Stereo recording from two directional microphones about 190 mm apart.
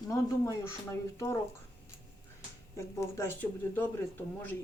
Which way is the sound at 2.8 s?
15° left (ahead or behind).